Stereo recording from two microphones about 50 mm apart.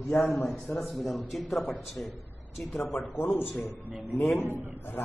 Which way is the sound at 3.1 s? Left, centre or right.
Left.